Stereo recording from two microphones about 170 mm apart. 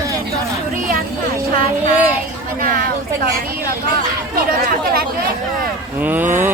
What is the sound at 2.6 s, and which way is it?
Speech, 55° right (ahead or behind).